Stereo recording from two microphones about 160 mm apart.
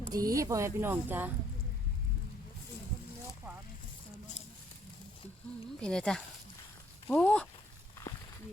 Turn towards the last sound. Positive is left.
turn(degrees=5)  # may be behind; listen again after turning